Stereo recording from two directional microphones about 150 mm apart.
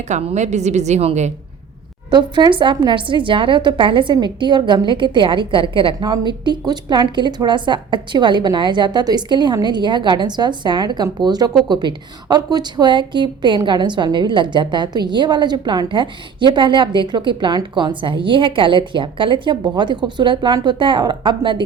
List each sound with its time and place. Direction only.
0.1 s a woman's voice: 45° right (ahead or behind)
2.0 s a woman's voice: 30° right (ahead or behind)